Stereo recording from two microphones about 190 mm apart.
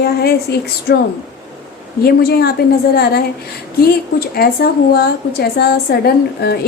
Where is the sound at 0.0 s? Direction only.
55° left (ahead or behind).